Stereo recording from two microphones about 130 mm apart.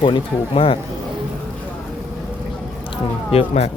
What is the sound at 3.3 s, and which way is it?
Speech, 55° left (ahead or behind).